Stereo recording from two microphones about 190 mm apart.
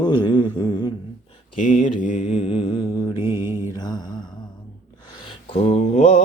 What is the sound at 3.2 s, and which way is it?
Mantra, 15° right (ahead or behind).